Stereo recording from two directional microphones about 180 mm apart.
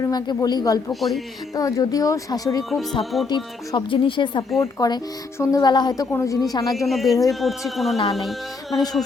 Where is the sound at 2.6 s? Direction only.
Centre (ahead or behind).